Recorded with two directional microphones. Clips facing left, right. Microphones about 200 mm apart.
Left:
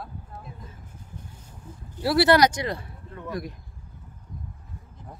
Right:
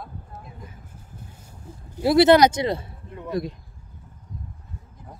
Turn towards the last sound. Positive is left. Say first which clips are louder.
# right 5 dB
turn(degrees=-25)  # may be behind; listen again after turning